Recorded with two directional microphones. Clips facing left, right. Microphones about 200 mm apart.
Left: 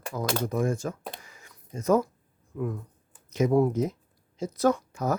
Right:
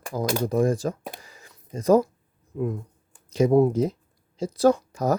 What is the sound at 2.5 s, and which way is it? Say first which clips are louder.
Speech: right 4 dB; 25° right (ahead or behind).